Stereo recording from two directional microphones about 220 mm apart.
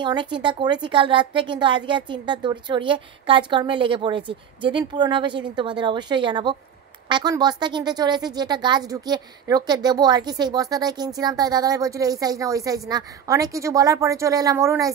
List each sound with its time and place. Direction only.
0.0 s a woman's voice: 20° right (ahead or behind)